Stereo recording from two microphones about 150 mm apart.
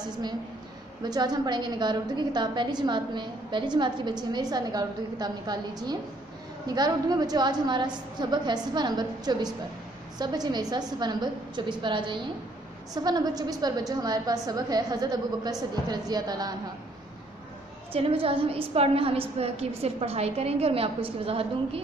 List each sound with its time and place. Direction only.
0.0 s a woman's voice: 30° right (ahead or behind)
17.9 s a woman's voice: 40° right (ahead or behind)